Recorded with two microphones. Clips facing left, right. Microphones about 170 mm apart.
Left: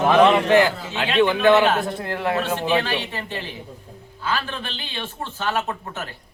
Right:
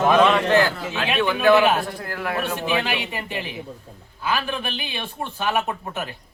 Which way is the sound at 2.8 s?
15° right (ahead or behind).